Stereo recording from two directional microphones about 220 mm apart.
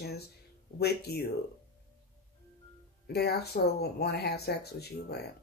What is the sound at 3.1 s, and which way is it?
Speech, 45° left (ahead or behind).